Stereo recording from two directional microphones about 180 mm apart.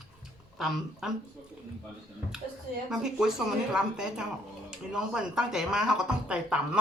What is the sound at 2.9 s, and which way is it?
Speech, 5° right (ahead or behind).